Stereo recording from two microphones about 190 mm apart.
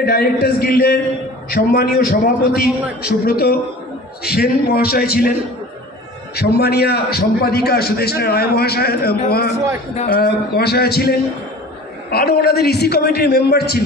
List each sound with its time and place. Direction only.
0.0 s a man's voice: 55° left (ahead or behind)
6.3 s a man's voice: 55° left (ahead or behind)
10.2 s a man's voice: 60° left (ahead or behind)